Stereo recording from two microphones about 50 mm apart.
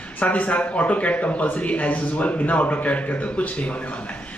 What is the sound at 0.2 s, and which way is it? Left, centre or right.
Speech, left.